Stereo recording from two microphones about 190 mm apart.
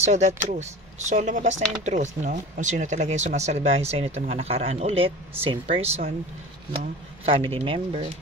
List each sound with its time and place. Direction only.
0.0 s speech: 35° right (ahead or behind)
7.2 s speech: 30° right (ahead or behind)